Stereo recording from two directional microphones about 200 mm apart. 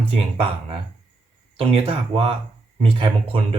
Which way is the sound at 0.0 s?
30° right (ahead or behind).